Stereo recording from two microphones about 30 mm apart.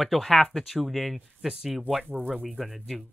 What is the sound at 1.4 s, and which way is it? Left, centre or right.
Speech, right.